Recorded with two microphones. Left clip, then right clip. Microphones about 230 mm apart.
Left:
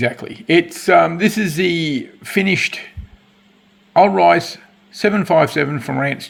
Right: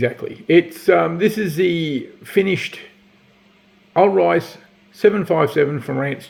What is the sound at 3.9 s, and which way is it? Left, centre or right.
Speech, left.